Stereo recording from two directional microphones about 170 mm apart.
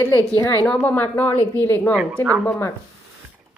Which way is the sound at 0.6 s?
10° left (ahead or behind).